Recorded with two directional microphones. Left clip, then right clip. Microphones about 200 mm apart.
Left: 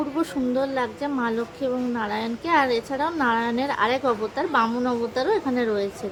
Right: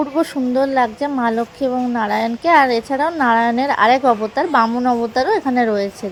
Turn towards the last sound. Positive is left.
turn(degrees=-25)  # may be behind; listen again after turning